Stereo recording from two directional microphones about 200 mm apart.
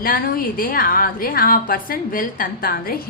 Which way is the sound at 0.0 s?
45° left (ahead or behind).